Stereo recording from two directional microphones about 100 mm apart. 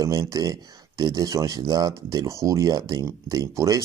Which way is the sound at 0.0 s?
35° right (ahead or behind).